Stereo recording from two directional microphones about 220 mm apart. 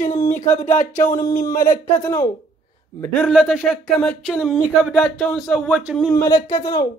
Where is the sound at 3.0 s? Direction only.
Centre (ahead or behind).